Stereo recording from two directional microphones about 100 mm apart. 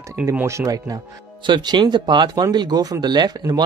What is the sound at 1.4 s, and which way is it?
Speech, 50° right (ahead or behind).